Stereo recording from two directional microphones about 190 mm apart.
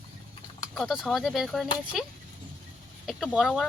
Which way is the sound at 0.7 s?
Centre (ahead or behind).